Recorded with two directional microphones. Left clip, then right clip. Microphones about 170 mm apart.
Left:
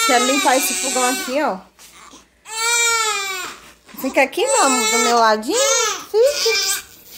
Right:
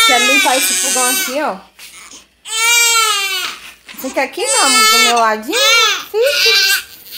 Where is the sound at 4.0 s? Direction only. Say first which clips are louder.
Left 1 dB; 30° left (ahead or behind).